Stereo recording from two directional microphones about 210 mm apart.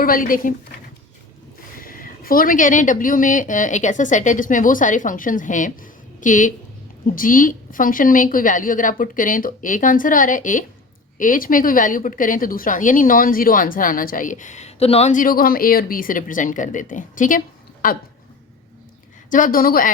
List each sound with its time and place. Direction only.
0.0 s a woman's voice: 40° left (ahead or behind)
1.8 s a woman's voice: 40° left (ahead or behind)
19.3 s a woman's voice: 40° left (ahead or behind)